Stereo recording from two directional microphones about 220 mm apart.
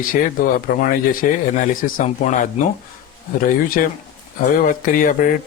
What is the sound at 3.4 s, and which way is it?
Speech, 40° left (ahead or behind).